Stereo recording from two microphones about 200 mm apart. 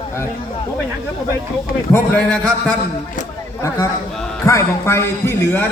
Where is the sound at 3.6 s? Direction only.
15° left (ahead or behind).